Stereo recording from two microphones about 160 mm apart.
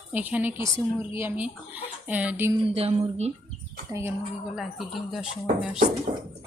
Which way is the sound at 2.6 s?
40° right (ahead or behind).